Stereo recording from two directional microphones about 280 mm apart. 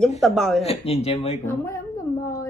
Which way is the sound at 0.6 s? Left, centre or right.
Left.